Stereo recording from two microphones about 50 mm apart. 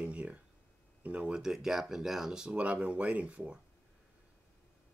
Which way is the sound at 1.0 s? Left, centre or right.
Right.